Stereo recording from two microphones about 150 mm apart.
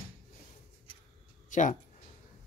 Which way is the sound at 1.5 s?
55° left (ahead or behind).